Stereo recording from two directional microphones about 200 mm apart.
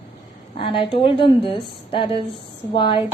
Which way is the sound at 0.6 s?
25° left (ahead or behind).